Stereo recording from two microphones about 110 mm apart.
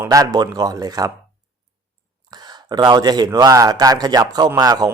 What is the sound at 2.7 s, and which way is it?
Speech, 40° right (ahead or behind).